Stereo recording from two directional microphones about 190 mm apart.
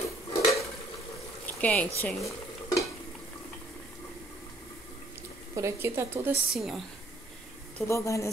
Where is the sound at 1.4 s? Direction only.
10° left (ahead or behind).